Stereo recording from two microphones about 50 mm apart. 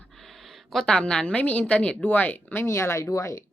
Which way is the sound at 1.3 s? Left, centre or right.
Left.